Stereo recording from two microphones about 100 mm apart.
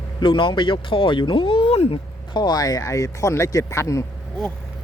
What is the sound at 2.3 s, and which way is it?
Speech, 45° left (ahead or behind).